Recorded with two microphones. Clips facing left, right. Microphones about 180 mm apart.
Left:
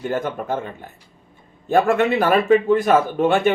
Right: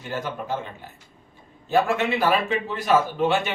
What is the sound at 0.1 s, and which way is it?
Speech, 50° left (ahead or behind).